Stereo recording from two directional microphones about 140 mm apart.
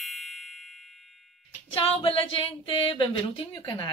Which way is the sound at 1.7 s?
40° left (ahead or behind).